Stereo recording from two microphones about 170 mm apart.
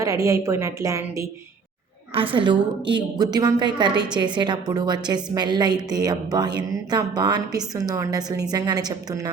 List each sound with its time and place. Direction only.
0.0 s a woman's voice: 20° right (ahead or behind)
2.1 s a woman's voice: 30° right (ahead or behind)